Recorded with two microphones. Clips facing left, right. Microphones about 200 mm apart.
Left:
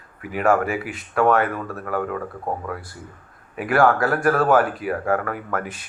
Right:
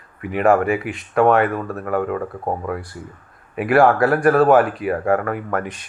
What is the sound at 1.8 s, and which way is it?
Speech, 15° right (ahead or behind).